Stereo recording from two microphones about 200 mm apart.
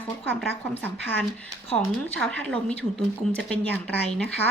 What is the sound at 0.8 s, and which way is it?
A woman's voice, 10° left (ahead or behind).